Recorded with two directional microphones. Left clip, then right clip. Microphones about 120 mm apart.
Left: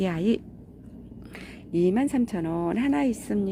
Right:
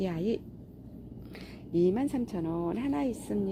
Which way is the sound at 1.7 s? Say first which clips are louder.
Left 4 dB; 40° left (ahead or behind).